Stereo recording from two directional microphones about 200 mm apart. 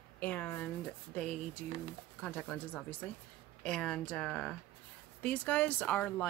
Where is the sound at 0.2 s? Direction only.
10° left (ahead or behind).